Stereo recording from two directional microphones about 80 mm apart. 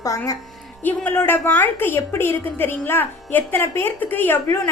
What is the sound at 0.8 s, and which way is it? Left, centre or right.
A woman's voice, left.